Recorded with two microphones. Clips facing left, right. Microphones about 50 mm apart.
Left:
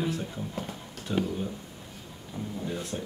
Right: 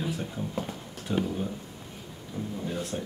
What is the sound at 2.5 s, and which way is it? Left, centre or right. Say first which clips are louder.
Speech: even; centre.